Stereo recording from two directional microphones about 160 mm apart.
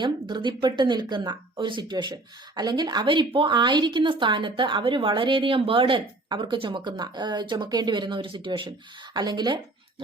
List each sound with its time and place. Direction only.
0.0 s a woman's voice: 30° right (ahead or behind)